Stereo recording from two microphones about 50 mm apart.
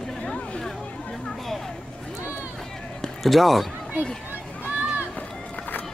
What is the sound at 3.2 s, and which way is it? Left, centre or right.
Speech, centre.